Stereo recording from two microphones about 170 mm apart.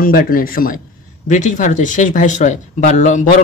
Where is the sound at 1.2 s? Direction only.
45° left (ahead or behind).